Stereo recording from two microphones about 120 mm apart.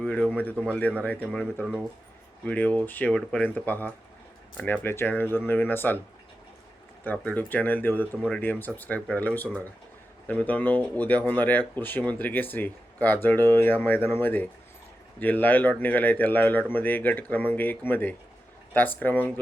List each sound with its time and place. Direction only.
0.0 s speech: 10° left (ahead or behind)
7.0 s speech: 15° left (ahead or behind)